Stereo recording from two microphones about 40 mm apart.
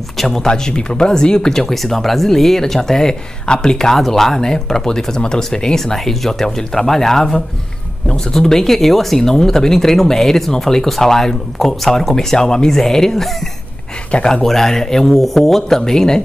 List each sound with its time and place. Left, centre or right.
0.2 s speech: centre
6.0 s speech: centre